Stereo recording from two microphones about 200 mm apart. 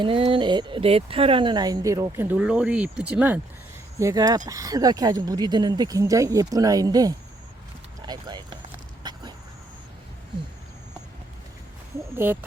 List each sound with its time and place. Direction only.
0.0 s speech: 25° right (ahead or behind)
9.0 s a sound: 20° right (ahead or behind)
12.1 s speech: 10° right (ahead or behind)